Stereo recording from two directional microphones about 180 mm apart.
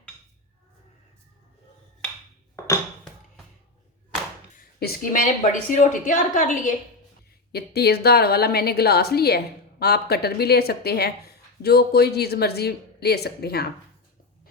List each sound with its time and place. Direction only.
4.8 s a woman's voice: 45° left (ahead or behind)
7.5 s a woman's voice: 60° left (ahead or behind)